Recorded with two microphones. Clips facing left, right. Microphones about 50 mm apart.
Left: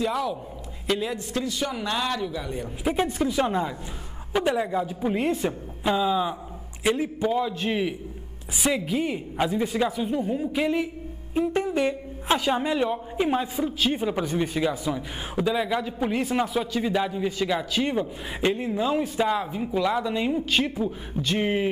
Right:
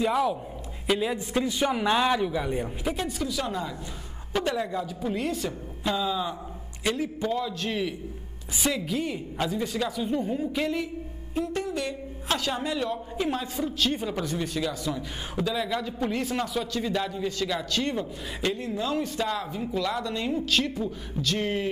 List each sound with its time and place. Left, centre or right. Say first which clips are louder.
0.0 s a man's voice: right 2 dB; centre
1.1 s a man's voice: right 1 dB; centre
3.0 s a woman's voice: left 6 dB; left
4.3 s a woman's voice: left 4 dB; centre
10.0 s a woman's voice: left 1 dB; centre